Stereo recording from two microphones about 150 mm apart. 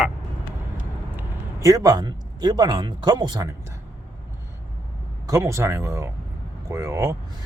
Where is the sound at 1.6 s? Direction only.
25° right (ahead or behind).